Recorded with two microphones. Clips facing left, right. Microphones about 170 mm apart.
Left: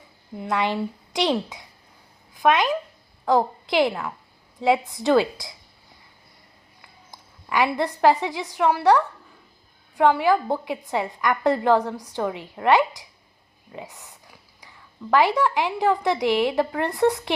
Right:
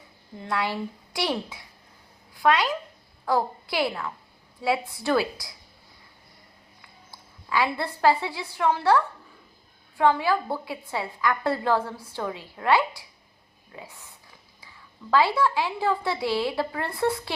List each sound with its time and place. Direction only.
0.3 s speech: 20° left (ahead or behind)
7.1 s a woman's voice: 15° left (ahead or behind)
15.1 s a woman's voice: 15° left (ahead or behind)